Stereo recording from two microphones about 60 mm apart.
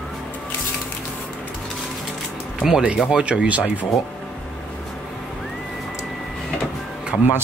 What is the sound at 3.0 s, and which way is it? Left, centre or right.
Speech, centre.